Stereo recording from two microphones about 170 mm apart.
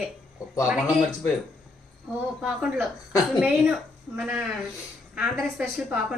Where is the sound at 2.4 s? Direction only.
5° right (ahead or behind).